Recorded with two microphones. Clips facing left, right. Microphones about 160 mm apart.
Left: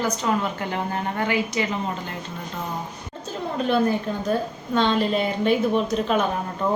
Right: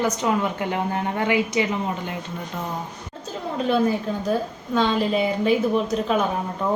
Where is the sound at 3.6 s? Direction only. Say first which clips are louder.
Right 1 dB; centre (ahead or behind).